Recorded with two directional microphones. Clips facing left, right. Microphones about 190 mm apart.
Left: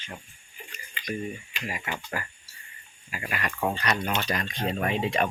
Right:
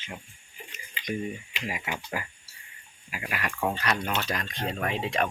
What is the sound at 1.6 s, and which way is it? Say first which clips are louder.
Speech: even; 10° right (ahead or behind).